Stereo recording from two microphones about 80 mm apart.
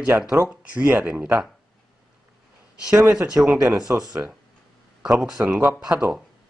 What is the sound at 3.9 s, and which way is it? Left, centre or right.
Speech, right.